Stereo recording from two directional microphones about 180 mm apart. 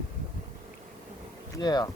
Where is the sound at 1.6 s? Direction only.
20° left (ahead or behind).